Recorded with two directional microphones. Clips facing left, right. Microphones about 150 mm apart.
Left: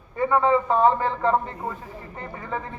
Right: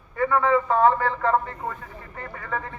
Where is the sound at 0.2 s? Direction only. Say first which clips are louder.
Left 1 dB; 20° left (ahead or behind).